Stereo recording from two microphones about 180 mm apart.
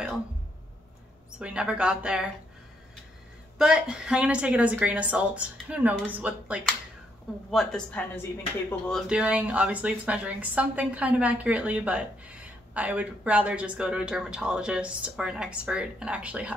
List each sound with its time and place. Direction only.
1.4 s a woman's voice: 5° right (ahead or behind)
3.5 s a woman's voice: 5° right (ahead or behind)
7.5 s speech: 5° left (ahead or behind)
8.9 s speech: 5° right (ahead or behind)